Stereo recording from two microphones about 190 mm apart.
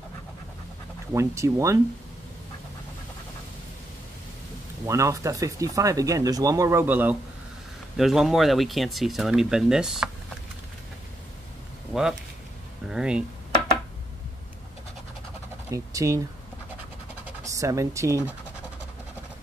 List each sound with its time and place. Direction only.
1.1 s speech: 15° right (ahead or behind)
4.8 s speech: 15° right (ahead or behind)
11.9 s speech: 5° right (ahead or behind)
15.7 s typing: 15° right (ahead or behind)
17.4 s speech: 15° right (ahead or behind)